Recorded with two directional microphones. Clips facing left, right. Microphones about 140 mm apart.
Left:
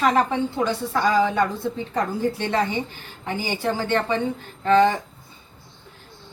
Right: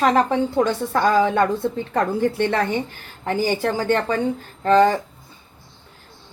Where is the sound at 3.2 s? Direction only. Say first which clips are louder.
Right 6 dB; 45° right (ahead or behind).